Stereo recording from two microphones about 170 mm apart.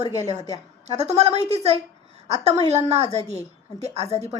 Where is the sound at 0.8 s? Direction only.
40° right (ahead or behind).